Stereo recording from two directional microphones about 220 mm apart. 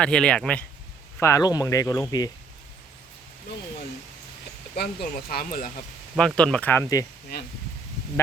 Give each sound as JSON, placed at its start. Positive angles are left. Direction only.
{"t": 0.0, "sound": "speech", "side_deg": 5}
{"t": 4.8, "sound": "speech", "side_deg": 45}
{"t": 6.1, "sound": "speech", "side_deg": 5}